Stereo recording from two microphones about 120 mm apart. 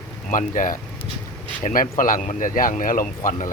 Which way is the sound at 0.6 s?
90° left.